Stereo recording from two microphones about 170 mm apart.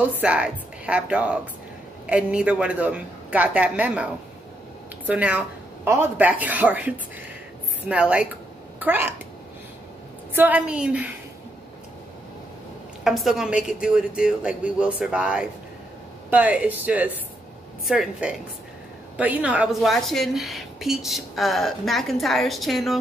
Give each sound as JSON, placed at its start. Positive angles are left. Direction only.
{"t": 0.1, "sound": "a woman's voice", "side_deg": -5}
{"t": 10.3, "sound": "a woman's voice", "side_deg": -10}
{"t": 13.0, "sound": "a woman's voice", "side_deg": 0}